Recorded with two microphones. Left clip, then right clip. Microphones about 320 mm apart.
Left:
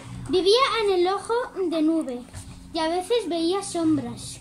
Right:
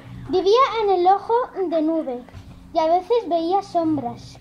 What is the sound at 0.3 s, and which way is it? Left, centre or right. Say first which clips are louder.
A child's voice: right 3 dB; centre.